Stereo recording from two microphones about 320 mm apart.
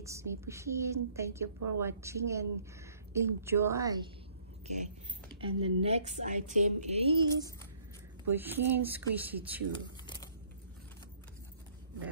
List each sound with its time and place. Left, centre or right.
0.0 s a woman's voice: centre
5.4 s a woman's voice: centre
9.7 s a sound: centre